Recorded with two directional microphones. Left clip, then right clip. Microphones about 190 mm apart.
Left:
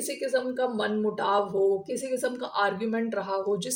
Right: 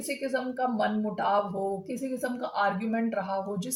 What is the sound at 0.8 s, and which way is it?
Speech, 45° left (ahead or behind).